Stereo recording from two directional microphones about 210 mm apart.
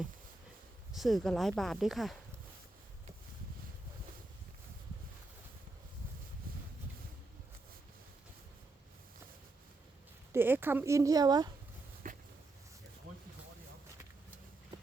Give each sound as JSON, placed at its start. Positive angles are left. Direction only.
{"t": 0.9, "sound": "speech", "side_deg": 0}
{"t": 10.3, "sound": "a woman's voice", "side_deg": -10}
{"t": 12.0, "sound": "a sound", "side_deg": -40}